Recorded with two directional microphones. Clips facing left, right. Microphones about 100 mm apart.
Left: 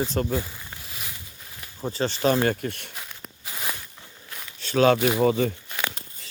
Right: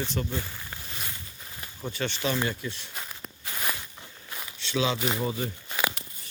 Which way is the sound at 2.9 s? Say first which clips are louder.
Right 1 dB; centre (ahead or behind).